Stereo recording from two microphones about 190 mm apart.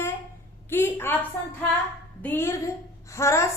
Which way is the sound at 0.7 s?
10° left (ahead or behind).